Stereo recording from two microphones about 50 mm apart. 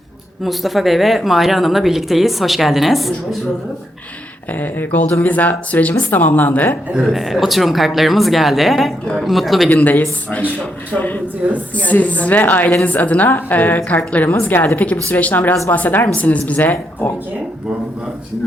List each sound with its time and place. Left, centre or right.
0.4 s speech: centre
4.6 s a woman's voice: left
7.0 s speech: centre
9.6 s a woman's voice: left
11.4 s speech: right
11.8 s a woman's voice: left